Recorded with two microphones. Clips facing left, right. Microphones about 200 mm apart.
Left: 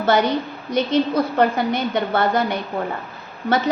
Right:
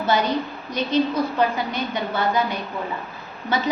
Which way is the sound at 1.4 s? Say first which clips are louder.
Left 4 dB; 55° left (ahead or behind).